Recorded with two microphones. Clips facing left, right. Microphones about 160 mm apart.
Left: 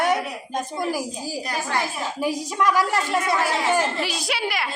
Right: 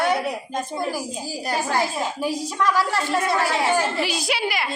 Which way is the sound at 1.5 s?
25° right (ahead or behind).